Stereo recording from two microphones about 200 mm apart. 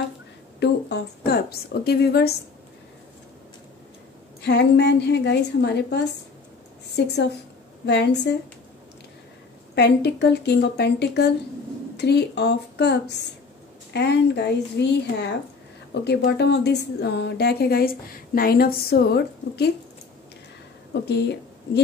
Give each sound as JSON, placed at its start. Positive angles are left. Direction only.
{"t": 0.6, "sound": "a woman's voice", "side_deg": 55}
{"t": 4.4, "sound": "a woman's voice", "side_deg": 55}
{"t": 7.0, "sound": "a woman's voice", "side_deg": 55}
{"t": 9.8, "sound": "a woman's voice", "side_deg": 55}
{"t": 20.9, "sound": "speech", "side_deg": 60}